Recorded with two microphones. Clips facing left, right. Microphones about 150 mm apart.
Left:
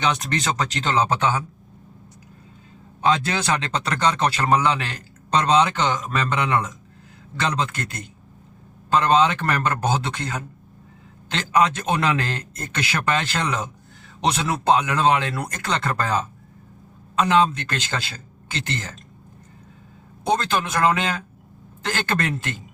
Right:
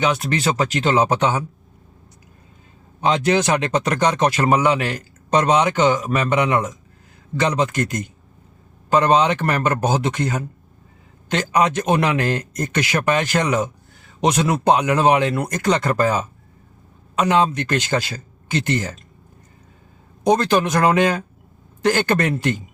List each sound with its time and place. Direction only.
0.0 s speech: 5° right (ahead or behind)
3.0 s speech: 20° right (ahead or behind)
20.2 s speech: 15° right (ahead or behind)